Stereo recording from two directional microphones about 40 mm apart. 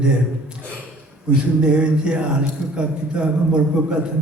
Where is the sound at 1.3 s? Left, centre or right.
Right.